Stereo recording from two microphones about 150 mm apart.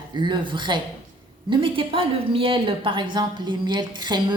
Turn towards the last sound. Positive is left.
turn(degrees=-30)  # may be behind; listen again after turning